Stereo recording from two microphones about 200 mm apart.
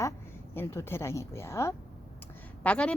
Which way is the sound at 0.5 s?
10° left (ahead or behind).